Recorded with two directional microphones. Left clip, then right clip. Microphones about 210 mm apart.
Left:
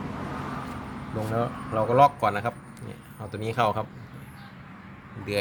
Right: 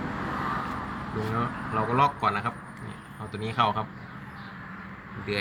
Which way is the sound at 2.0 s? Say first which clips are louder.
Left 5 dB; 60° left (ahead or behind).